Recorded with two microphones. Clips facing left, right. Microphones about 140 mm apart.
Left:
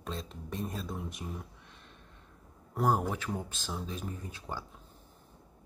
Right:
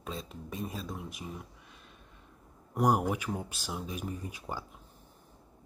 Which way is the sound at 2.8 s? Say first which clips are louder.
Right 2 dB; 15° right (ahead or behind).